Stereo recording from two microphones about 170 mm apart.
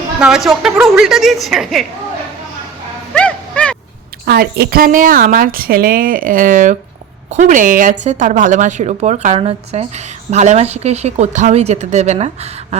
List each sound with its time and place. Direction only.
0.2 s a woman's voice: 5° right (ahead or behind)
3.2 s a sound: 5° left (ahead or behind)
4.3 s a woman's voice: 70° right (ahead or behind); by 12.5 s 40° right (ahead or behind)